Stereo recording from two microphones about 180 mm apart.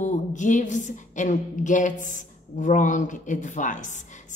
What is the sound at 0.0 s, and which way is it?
A woman's voice, 45° left (ahead or behind).